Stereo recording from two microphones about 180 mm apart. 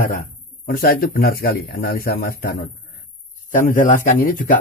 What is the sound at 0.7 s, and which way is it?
A man's voice, 55° left (ahead or behind).